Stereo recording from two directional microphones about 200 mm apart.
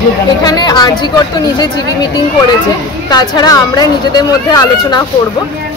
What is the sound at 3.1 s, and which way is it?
Speech, 20° left (ahead or behind).